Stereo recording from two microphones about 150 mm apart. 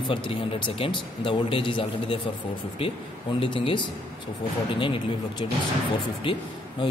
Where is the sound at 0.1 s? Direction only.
35° left (ahead or behind).